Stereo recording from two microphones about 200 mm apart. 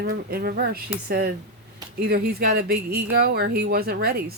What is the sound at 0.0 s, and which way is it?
Speech, 50° right (ahead or behind).